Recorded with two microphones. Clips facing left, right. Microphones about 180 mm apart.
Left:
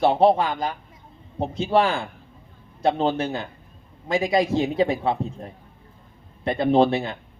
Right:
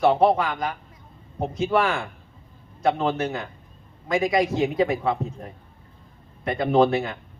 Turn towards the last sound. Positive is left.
turn(degrees=30)  # may be behind; listen again after turning